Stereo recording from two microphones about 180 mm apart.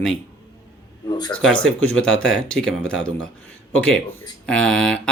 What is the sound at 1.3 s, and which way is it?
Speech, 5° left (ahead or behind).